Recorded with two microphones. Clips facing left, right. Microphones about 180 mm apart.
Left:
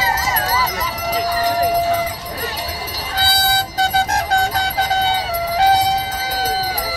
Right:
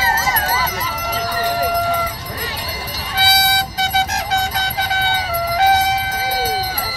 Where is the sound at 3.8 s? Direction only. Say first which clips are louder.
Left 3 dB; 55° left (ahead or behind).